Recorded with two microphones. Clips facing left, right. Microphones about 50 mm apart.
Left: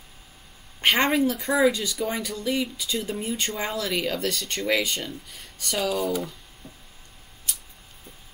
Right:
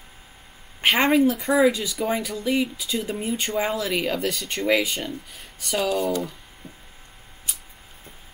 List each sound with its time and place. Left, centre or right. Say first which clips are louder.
0.8 s speech: right 3 dB; centre